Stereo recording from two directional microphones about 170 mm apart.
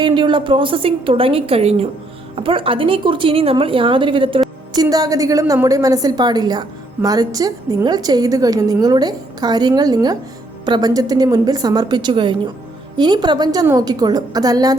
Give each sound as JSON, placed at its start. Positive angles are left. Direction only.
{"t": 0.0, "sound": "a woman's voice", "side_deg": -25}